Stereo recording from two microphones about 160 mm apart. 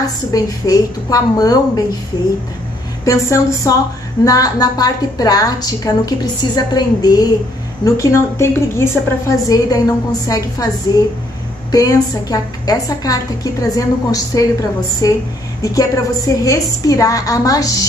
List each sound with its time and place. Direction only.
0.0 s a woman's voice: 20° left (ahead or behind)
3.1 s a woman's voice: 20° left (ahead or behind)
11.7 s a woman's voice: 20° left (ahead or behind)